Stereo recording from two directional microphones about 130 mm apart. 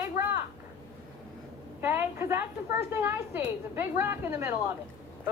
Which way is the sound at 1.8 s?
20° right (ahead or behind).